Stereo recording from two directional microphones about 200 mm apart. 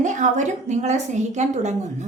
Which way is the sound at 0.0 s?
40° right (ahead or behind).